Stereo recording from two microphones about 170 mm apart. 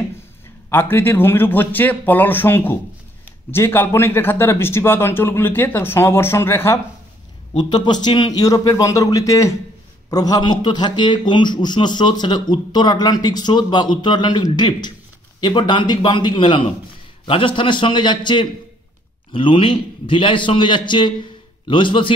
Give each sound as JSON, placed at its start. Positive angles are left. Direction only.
{"t": 0.7, "sound": "speech", "side_deg": 15}
{"t": 7.5, "sound": "a man's voice", "side_deg": 25}